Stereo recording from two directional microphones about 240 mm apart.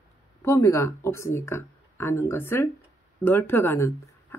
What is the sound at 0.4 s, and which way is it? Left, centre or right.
Speech, centre.